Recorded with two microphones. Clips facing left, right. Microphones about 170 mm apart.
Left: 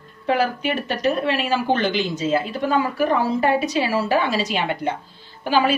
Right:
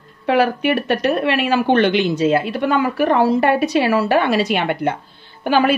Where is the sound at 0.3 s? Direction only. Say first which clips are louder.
Right 5 dB; 65° right (ahead or behind).